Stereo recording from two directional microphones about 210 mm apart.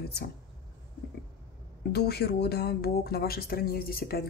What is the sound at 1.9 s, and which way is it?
Speech, 50° left (ahead or behind).